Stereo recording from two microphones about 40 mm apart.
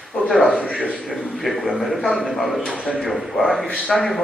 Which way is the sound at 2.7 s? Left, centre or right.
Right.